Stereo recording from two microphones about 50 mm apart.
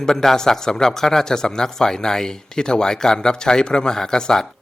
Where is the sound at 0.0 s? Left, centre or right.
Centre.